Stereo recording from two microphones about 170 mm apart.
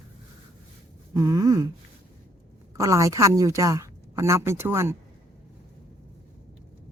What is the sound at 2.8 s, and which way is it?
A woman's voice, 20° right (ahead or behind).